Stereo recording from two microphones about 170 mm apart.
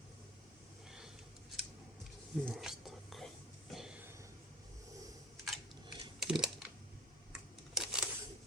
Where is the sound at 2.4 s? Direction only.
Centre (ahead or behind).